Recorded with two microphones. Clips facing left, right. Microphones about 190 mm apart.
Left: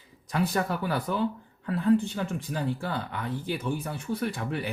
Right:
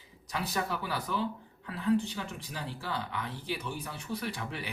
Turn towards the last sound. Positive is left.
turn(degrees=50)  # may be behind; listen again after turning